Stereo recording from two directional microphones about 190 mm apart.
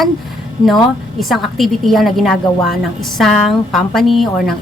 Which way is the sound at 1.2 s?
Centre (ahead or behind).